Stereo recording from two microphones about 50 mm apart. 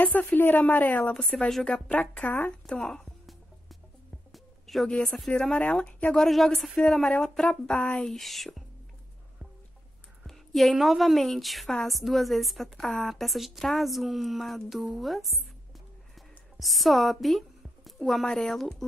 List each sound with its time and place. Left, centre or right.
0.0 s a woman's voice: left
1.2 s speech: left
2.6 s speech: centre
4.3 s music: centre
4.8 s speech: centre
5.6 s a woman's voice: left
6.1 s speech: centre
8.1 s speech: centre
10.2 s a woman's voice: centre
16.5 s a woman's voice: centre
18.2 s speech: centre